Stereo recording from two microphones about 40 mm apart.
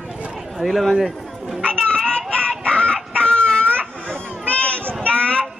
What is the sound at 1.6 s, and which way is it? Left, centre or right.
Child singing, left.